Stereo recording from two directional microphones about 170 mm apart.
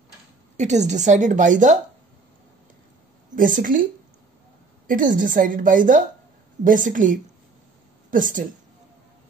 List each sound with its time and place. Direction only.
0.6 s a woman's voice: 45° right (ahead or behind)
3.3 s a woman's voice: 50° right (ahead or behind)
4.8 s a woman's voice: 50° right (ahead or behind)